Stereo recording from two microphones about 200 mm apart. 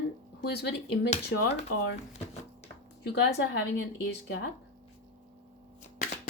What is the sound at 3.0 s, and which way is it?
Speech, 55° left (ahead or behind).